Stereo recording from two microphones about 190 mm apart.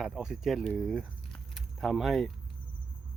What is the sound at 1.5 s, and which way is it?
Keys jangling, centre (ahead or behind).